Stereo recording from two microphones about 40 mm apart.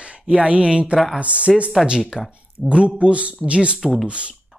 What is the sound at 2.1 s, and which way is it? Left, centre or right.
Speech, right.